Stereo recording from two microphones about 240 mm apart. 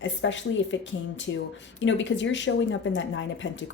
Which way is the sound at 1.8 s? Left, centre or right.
Left.